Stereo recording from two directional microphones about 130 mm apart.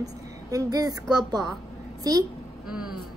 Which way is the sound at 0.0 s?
25° right (ahead or behind).